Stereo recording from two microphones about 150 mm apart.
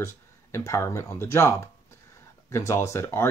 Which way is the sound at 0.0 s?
20° left (ahead or behind).